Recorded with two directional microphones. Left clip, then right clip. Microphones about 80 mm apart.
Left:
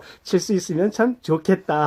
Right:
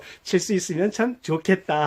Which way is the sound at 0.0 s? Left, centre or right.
Right.